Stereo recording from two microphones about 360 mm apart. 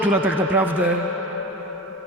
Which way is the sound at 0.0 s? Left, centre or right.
Centre.